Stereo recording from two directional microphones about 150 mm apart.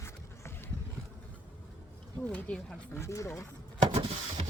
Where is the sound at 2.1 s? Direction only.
10° left (ahead or behind).